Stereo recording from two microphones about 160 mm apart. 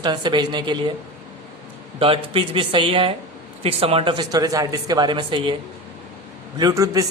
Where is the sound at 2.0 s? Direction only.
35° right (ahead or behind).